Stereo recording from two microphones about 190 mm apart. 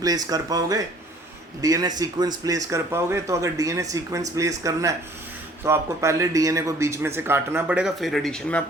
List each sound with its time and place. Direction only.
0.0 s a man's voice: 20° right (ahead or behind); by 8.6 s 5° left (ahead or behind)